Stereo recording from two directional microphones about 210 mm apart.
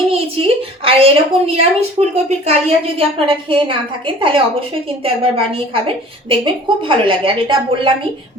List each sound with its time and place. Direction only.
0.1 s a woman's voice: 25° right (ahead or behind)